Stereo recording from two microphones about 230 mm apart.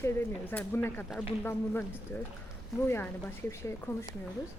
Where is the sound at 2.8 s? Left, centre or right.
Centre.